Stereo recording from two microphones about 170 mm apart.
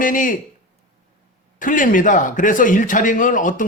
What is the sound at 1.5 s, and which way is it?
A man's voice, 50° left (ahead or behind).